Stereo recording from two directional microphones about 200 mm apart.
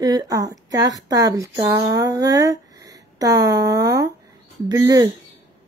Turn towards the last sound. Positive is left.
turn(degrees=-20)  # may be behind; listen again after turning